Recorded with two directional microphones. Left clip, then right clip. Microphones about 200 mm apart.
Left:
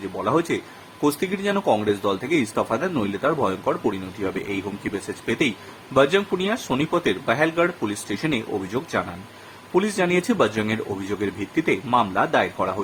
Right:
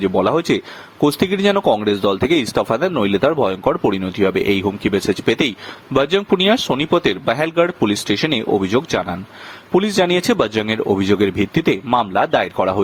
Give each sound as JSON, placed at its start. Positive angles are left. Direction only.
{"t": 0.3, "sound": "speech", "side_deg": -40}